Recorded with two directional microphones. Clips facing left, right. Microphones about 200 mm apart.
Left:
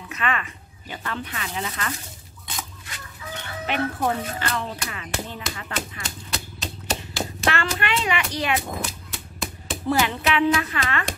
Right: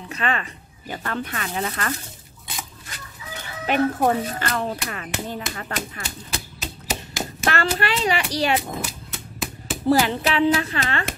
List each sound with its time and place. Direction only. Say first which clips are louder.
0.1 s speech: right 1 dB; 35° right (ahead or behind); by 2.0 s 50° right (ahead or behind)
3.6 s speech: right 5 dB; 45° right (ahead or behind)
6.3 s a sound: left 1 dB; 5° right (ahead or behind)
7.4 s speech: right 3 dB; 40° right (ahead or behind)
8.5 s cap gun: right 2 dB; centre (ahead or behind)
9.8 s speech: right 3 dB; 35° right (ahead or behind)